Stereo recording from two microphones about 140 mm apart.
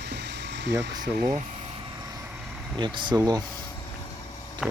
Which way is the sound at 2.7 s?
35° right (ahead or behind).